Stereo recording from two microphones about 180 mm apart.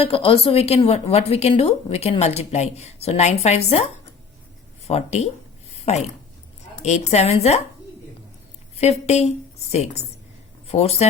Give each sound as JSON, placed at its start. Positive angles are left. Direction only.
{"t": 0.0, "sound": "a woman's voice", "side_deg": 30}
{"t": 4.9, "sound": "a woman's voice", "side_deg": 35}
{"t": 5.7, "sound": "a sound", "side_deg": 35}
{"t": 6.8, "sound": "a woman's voice", "side_deg": 40}
{"t": 8.7, "sound": "a woman's voice", "side_deg": 35}